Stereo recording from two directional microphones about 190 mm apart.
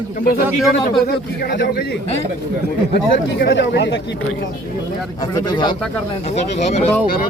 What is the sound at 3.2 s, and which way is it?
Speech, 70° left (ahead or behind).